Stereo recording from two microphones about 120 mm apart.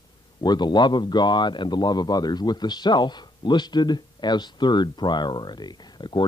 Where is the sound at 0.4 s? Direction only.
35° left (ahead or behind).